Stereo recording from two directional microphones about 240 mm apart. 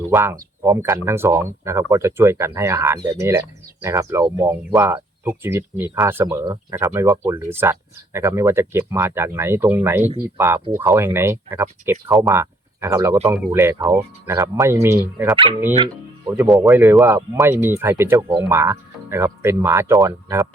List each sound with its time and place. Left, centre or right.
0.1 s speech: centre
15.7 s speech: right
16.4 s speech: centre